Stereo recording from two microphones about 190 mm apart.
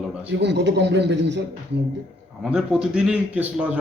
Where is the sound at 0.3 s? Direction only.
65° right (ahead or behind).